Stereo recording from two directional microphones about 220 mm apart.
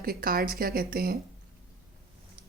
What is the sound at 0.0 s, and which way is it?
A woman's voice, 40° right (ahead or behind).